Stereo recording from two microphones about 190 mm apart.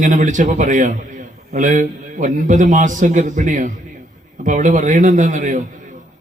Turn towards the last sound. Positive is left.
turn(degrees=-40)  # may be behind; listen again after turning